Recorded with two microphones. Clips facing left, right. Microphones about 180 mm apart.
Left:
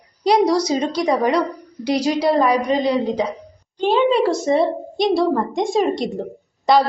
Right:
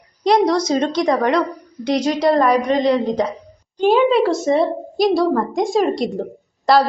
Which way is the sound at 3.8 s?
10° right (ahead or behind).